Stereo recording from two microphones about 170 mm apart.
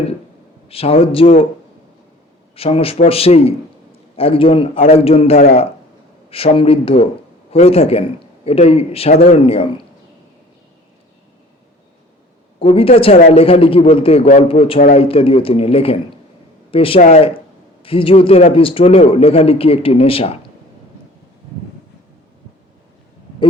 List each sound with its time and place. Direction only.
0.7 s speech: 35° left (ahead or behind)
2.6 s speech: 35° left (ahead or behind)
12.5 s speech: 35° left (ahead or behind)